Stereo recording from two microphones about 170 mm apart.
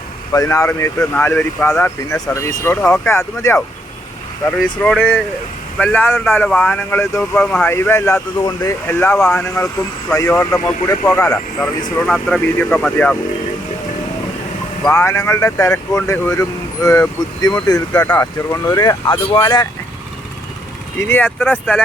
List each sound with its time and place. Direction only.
0.3 s speech: 20° left (ahead or behind)
4.5 s speech: 5° left (ahead or behind)
11.9 s speech: 5° left (ahead or behind)
14.8 s speech: 15° left (ahead or behind)
17.9 s speech: 10° left (ahead or behind); by 19.5 s 30° left (ahead or behind)
21.0 s speech: 10° left (ahead or behind)